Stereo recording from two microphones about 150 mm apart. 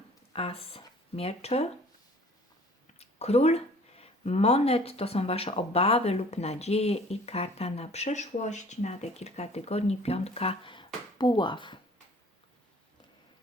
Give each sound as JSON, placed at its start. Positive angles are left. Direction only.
{"t": 0.3, "sound": "speech", "side_deg": 40}
{"t": 3.0, "sound": "speech", "side_deg": 45}